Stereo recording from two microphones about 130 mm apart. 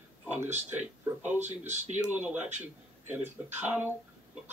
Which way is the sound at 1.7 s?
65° right (ahead or behind).